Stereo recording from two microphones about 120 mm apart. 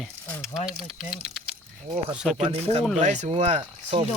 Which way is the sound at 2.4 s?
55° right (ahead or behind).